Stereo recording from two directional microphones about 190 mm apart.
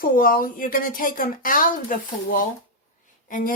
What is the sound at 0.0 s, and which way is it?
A woman's voice, 50° left (ahead or behind).